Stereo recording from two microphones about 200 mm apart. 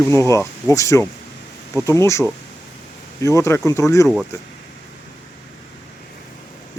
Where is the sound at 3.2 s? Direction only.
15° left (ahead or behind).